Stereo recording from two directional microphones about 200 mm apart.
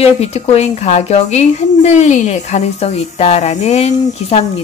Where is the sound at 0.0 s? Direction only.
30° left (ahead or behind).